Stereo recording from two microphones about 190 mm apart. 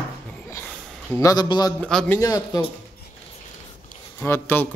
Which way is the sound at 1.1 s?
20° left (ahead or behind).